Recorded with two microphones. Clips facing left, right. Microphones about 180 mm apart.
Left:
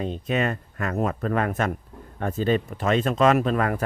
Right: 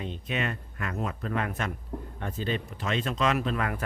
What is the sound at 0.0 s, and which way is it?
Speech, 40° left (ahead or behind).